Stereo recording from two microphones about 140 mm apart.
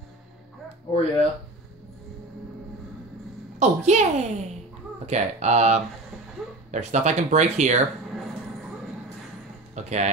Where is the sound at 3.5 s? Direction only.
55° right (ahead or behind).